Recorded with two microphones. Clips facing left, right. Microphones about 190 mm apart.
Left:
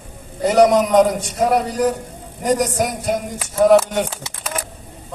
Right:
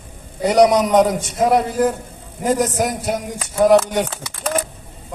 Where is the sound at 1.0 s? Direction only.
Centre (ahead or behind).